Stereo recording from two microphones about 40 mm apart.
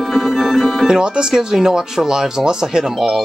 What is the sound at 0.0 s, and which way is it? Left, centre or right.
Music, centre.